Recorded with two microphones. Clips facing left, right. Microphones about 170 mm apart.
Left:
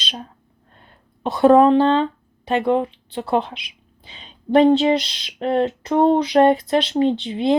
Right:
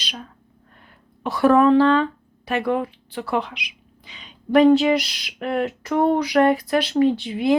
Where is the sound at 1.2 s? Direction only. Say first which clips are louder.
Left 3 dB; 20° left (ahead or behind).